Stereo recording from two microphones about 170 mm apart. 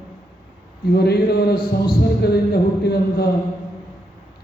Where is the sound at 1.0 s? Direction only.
65° left (ahead or behind).